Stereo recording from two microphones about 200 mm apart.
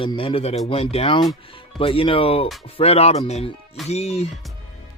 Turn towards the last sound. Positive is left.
turn(degrees=30)  # may be behind; listen again after turning